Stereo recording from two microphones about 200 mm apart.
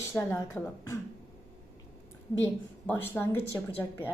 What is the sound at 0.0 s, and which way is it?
Speech, 15° left (ahead or behind).